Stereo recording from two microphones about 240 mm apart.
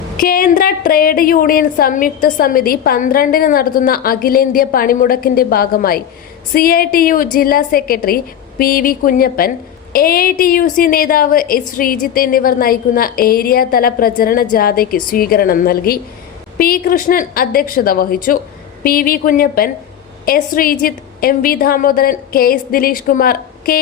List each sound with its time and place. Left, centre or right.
0.2 s a woman's voice: left